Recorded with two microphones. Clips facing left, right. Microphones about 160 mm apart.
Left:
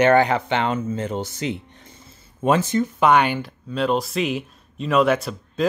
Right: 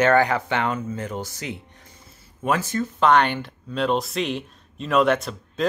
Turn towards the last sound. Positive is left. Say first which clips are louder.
# left 2 dB
turn(degrees=0)  # may be behind; listen again after turning